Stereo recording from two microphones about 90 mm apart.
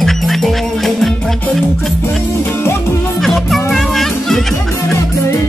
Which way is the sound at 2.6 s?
30° left (ahead or behind).